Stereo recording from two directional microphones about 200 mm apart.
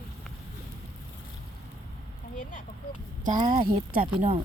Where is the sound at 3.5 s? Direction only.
45° right (ahead or behind).